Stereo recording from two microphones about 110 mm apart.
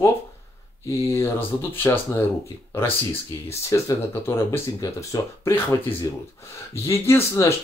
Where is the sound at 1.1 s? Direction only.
20° left (ahead or behind).